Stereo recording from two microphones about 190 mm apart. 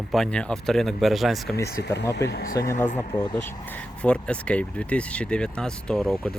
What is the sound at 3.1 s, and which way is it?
Speech, 25° left (ahead or behind).